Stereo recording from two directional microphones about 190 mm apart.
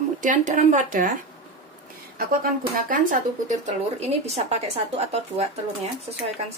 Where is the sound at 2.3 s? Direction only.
50° right (ahead or behind).